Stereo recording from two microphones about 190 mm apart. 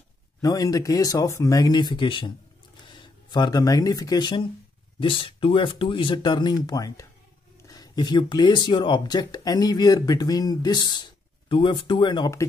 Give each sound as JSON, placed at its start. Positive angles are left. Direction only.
{"t": 0.4, "sound": "speech", "side_deg": 20}